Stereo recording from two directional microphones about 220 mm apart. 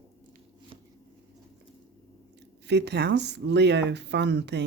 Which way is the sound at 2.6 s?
50° right (ahead or behind).